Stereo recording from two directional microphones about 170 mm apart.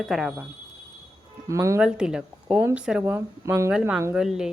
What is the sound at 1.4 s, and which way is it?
Speech, 15° right (ahead or behind).